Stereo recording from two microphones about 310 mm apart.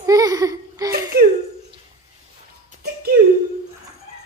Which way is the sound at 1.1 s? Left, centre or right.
Right.